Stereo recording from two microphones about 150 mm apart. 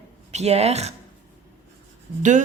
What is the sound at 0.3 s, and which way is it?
Speech, 45° right (ahead or behind).